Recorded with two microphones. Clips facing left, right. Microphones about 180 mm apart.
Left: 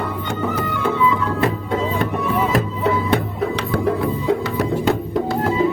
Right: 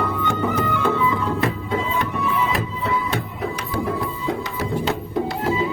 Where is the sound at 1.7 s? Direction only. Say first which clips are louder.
Left 3 dB; 50° left (ahead or behind).